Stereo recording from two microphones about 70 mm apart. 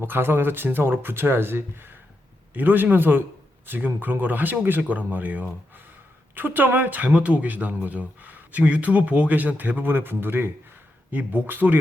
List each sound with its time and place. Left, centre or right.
0.0 s speech: right